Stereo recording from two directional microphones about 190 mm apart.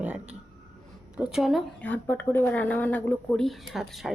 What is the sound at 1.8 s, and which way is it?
Speech, 10° left (ahead or behind).